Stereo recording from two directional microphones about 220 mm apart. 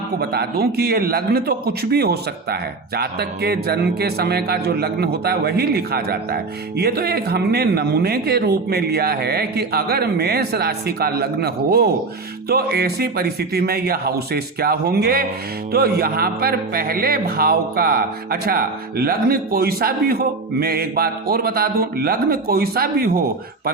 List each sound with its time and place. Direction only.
0.2 s a man's voice: 45° right (ahead or behind)